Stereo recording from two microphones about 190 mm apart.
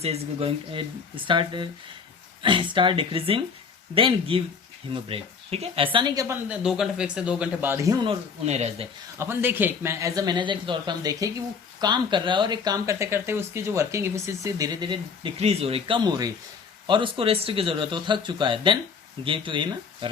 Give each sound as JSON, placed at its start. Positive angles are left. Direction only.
{"t": 0.0, "sound": "speech", "side_deg": -35}
{"t": 6.5, "sound": "speech", "side_deg": -5}
{"t": 8.4, "sound": "speech", "side_deg": -35}
{"t": 9.1, "sound": "speech", "side_deg": -15}